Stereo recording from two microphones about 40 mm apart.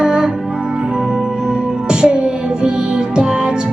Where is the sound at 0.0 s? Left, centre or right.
Centre.